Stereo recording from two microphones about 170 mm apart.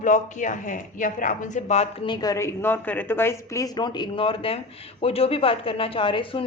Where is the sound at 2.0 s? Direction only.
25° left (ahead or behind).